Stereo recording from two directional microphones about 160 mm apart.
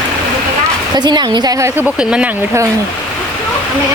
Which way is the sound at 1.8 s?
5° right (ahead or behind).